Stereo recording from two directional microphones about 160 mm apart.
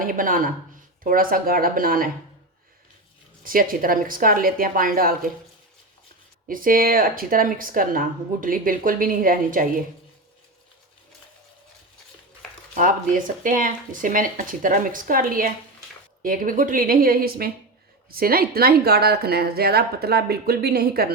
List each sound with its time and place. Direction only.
0.0 s speech: 60° right (ahead or behind)
3.4 s speech: 60° right (ahead or behind)
6.5 s speech: 60° right (ahead or behind)
12.7 s a woman's voice: 55° right (ahead or behind); by 21.1 s 75° right (ahead or behind)